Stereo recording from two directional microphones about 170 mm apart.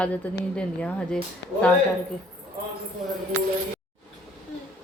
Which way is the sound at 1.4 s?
80° left.